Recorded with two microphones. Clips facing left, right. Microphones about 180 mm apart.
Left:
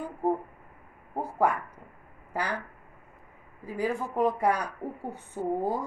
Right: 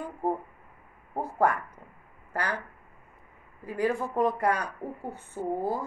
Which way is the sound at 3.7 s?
10° left (ahead or behind).